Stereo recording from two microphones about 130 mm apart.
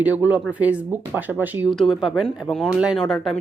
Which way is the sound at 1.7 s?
Centre (ahead or behind).